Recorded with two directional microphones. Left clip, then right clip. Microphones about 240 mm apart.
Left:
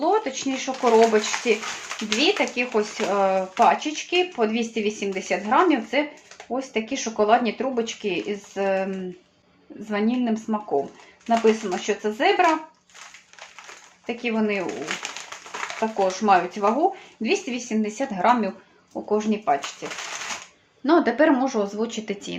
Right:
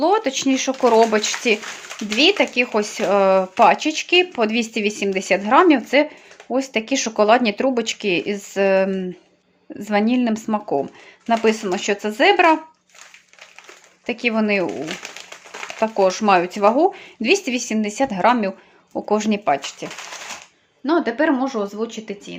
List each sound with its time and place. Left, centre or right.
0.0 s speech: right
14.1 s speech: right
15.0 s crumpling: centre
15.8 s speech: right
20.8 s speech: centre